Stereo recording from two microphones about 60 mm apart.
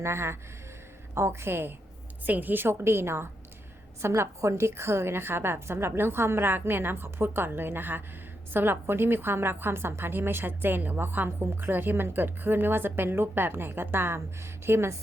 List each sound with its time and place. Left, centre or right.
0.0 s a woman's voice: right
2.2 s a woman's voice: right